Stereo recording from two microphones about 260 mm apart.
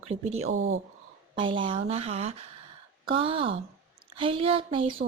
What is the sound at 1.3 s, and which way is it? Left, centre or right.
Speech, centre.